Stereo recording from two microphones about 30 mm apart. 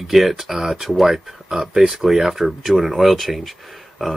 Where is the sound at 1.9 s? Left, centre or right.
Centre.